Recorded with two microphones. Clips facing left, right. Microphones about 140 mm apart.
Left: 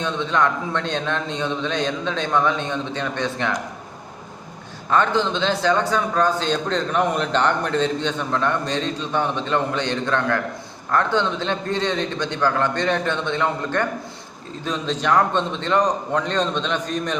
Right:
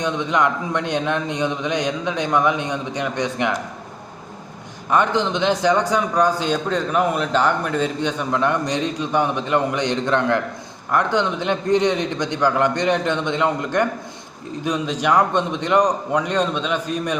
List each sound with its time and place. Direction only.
0.0 s a man's voice: 15° right (ahead or behind)
4.9 s a man's voice: 15° right (ahead or behind)